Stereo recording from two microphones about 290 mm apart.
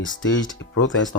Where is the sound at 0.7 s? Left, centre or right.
Left.